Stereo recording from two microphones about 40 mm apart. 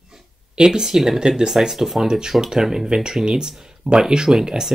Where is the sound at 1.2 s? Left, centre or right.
Centre.